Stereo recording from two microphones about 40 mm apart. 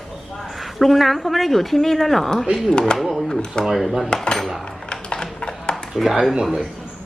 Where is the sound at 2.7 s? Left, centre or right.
Left.